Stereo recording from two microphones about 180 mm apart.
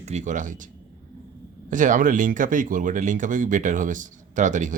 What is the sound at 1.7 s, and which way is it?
Speech, 45° right (ahead or behind).